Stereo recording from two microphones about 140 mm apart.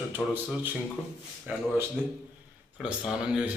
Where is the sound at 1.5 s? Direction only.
10° right (ahead or behind).